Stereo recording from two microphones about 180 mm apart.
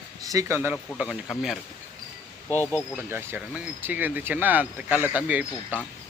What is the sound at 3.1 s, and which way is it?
Speech, 15° right (ahead or behind).